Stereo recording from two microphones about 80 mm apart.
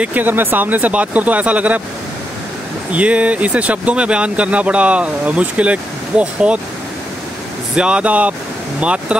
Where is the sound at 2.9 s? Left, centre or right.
Centre.